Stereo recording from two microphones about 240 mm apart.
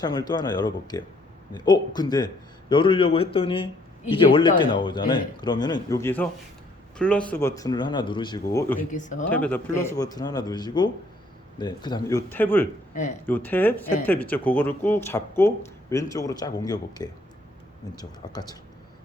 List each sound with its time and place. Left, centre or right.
0.0 s a man's voice: centre
8.9 s speech: left
9.3 s speech: centre
12.9 s speech: left
13.2 s speech: centre